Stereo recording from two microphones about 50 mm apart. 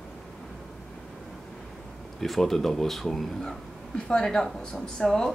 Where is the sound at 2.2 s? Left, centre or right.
Centre.